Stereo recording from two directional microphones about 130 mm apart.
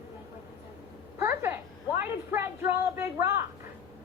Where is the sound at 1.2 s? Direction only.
20° right (ahead or behind).